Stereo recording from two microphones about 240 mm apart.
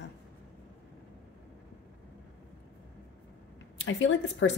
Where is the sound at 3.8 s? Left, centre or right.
Left.